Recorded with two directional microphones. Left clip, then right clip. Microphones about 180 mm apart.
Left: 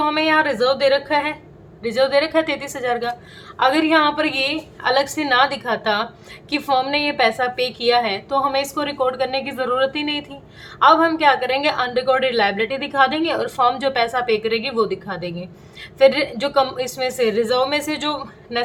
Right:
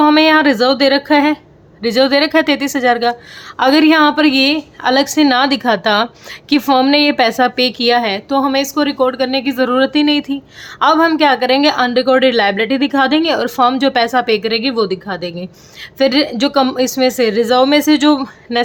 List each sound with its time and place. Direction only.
0.0 s a woman's voice: 45° right (ahead or behind)